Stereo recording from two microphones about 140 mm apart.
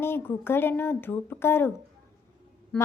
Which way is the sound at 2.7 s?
10° left (ahead or behind).